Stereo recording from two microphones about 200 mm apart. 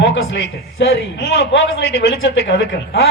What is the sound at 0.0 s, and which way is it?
A man's voice, 60° left (ahead or behind).